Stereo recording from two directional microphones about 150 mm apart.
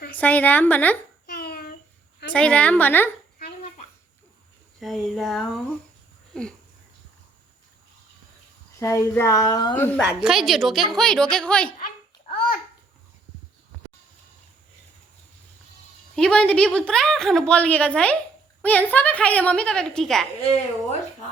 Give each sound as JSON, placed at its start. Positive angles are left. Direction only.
{"t": 0.2, "sound": "a woman's voice", "side_deg": 10}
{"t": 1.3, "sound": "a sound", "side_deg": 90}
{"t": 2.3, "sound": "a woman's voice", "side_deg": 10}
{"t": 4.8, "sound": "a woman's voice", "side_deg": 0}
{"t": 8.8, "sound": "speech", "side_deg": 20}
{"t": 9.7, "sound": "a woman's voice", "side_deg": 15}
{"t": 10.2, "sound": "a woman's voice", "side_deg": 0}
{"t": 16.1, "sound": "a woman's voice", "side_deg": 5}